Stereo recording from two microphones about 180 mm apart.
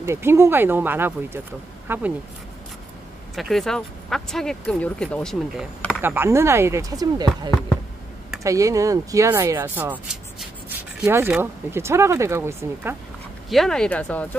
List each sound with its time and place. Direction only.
0.0 s speech: 15° right (ahead or behind)
3.3 s speech: centre (ahead or behind)
5.9 s speech: 10° right (ahead or behind)
11.1 s speech: 10° right (ahead or behind)
13.5 s speech: centre (ahead or behind)